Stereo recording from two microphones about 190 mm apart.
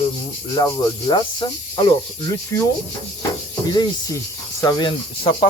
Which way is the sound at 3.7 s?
20° left (ahead or behind).